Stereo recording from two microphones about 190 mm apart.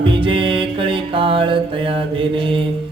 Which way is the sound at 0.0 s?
25° right (ahead or behind).